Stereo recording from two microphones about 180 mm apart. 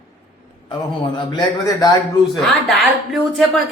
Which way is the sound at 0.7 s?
25° left (ahead or behind).